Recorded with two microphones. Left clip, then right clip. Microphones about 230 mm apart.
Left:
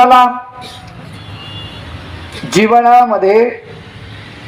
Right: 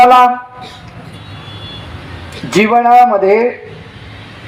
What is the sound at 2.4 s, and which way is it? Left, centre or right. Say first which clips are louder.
A man's voice: left 1 dB; left.